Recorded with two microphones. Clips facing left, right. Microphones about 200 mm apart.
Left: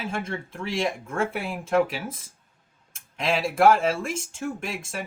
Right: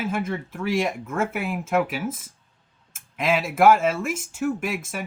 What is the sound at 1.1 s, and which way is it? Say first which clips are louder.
Speech: right 4 dB; 30° left (ahead or behind).